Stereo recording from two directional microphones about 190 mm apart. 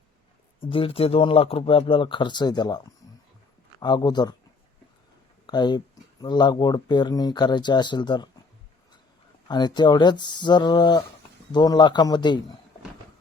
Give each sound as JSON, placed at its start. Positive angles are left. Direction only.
{"t": 0.6, "sound": "speech", "side_deg": 30}
{"t": 5.5, "sound": "speech", "side_deg": 20}
{"t": 9.5, "sound": "speech", "side_deg": 25}